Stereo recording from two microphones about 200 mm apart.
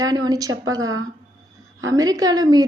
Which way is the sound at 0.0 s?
20° right (ahead or behind).